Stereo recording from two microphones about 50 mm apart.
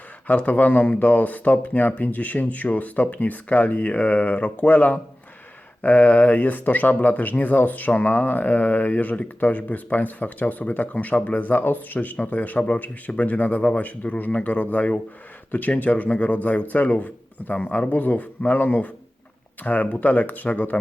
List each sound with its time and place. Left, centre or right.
0.3 s speech: left